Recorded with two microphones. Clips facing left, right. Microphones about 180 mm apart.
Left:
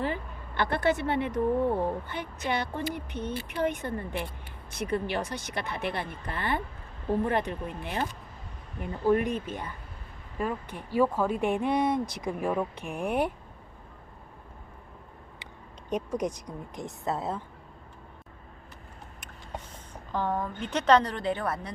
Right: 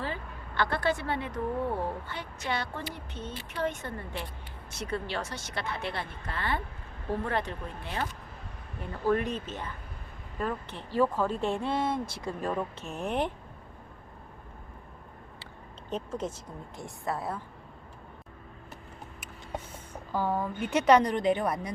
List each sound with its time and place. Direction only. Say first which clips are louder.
0.0 s speech: left 4 dB; 20° left (ahead or behind)
5.1 s speech: left 3 dB; 15° left (ahead or behind)
15.9 s speech: left 4 dB; 15° left (ahead or behind)
20.1 s a woman's voice: even; 10° right (ahead or behind)